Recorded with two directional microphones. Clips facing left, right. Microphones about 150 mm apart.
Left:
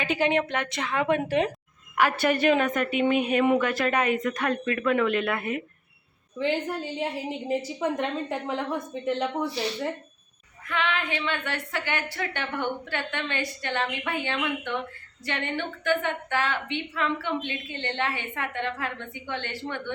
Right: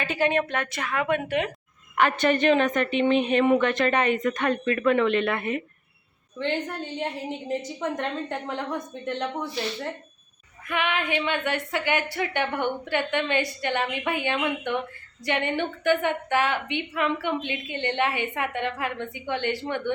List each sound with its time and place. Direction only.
0.0 s a woman's voice: 15° left (ahead or behind)
2.0 s a woman's voice: 10° left (ahead or behind)
10.7 s a woman's voice: 15° right (ahead or behind)